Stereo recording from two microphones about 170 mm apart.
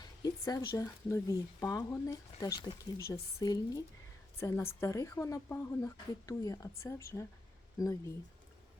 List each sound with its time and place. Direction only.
0.0 s speech: 20° left (ahead or behind)